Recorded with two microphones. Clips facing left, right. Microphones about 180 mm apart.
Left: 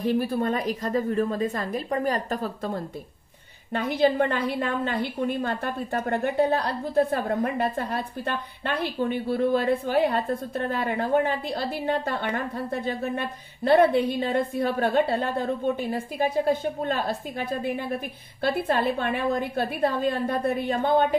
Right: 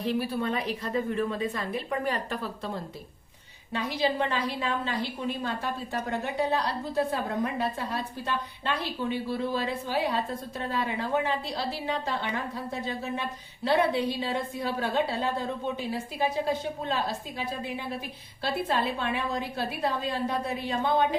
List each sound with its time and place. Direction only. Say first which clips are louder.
0.0 s a woman's voice: left 4 dB; 45° left (ahead or behind)